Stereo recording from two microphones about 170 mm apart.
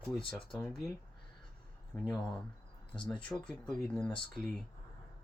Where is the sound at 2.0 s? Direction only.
Centre (ahead or behind).